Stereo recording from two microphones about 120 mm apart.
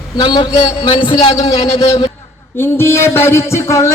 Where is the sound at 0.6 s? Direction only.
60° left (ahead or behind).